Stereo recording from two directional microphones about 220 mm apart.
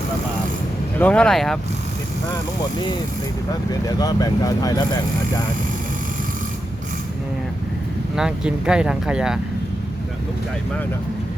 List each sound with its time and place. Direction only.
0.9 s speech: 5° left (ahead or behind)
3.7 s speech: 15° left (ahead or behind)
8.1 s speech: 5° right (ahead or behind)